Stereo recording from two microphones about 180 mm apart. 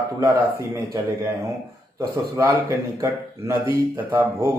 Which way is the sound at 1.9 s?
15° right (ahead or behind).